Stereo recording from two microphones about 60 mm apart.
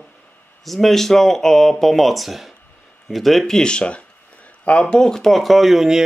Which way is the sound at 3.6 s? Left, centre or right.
Centre.